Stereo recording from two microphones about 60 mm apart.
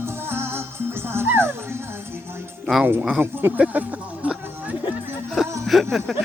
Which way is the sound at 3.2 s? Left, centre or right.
Right.